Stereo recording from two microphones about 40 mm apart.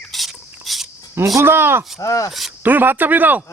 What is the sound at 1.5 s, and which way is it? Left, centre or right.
Speech, right.